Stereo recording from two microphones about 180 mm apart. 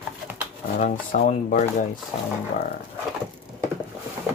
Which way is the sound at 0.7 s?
45° left (ahead or behind).